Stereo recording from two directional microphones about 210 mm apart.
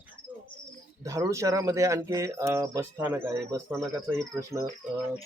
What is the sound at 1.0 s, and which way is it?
Speech, 15° right (ahead or behind).